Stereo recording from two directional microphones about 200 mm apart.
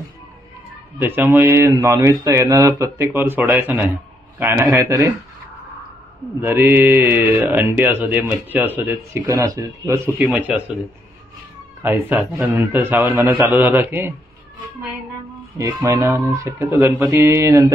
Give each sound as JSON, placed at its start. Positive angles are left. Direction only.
{"t": 0.9, "sound": "speech", "side_deg": -10}
{"t": 6.4, "sound": "speech", "side_deg": -10}
{"t": 11.8, "sound": "speech", "side_deg": -10}
{"t": 15.5, "sound": "speech", "side_deg": -15}